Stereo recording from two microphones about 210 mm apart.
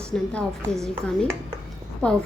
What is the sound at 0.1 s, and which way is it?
Speech, 5° left (ahead or behind).